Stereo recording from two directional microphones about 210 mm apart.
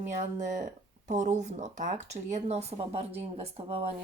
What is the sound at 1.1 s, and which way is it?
Speech, 35° right (ahead or behind).